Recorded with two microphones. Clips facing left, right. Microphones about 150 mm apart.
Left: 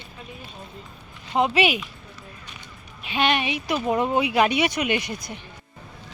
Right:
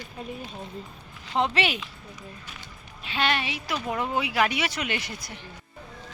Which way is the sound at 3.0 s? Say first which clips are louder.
Left 4 dB; 15° left (ahead or behind).